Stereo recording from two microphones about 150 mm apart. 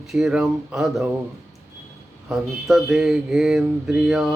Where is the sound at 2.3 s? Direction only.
Centre (ahead or behind).